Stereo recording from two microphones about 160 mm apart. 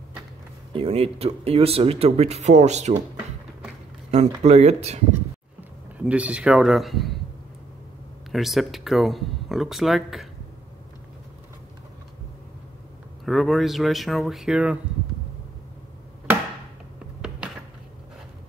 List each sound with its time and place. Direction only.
0.7 s speech: 35° right (ahead or behind)
4.1 s speech: 45° right (ahead or behind)
5.6 s speech: 10° right (ahead or behind)
8.3 s speech: centre (ahead or behind)
13.2 s speech: centre (ahead or behind)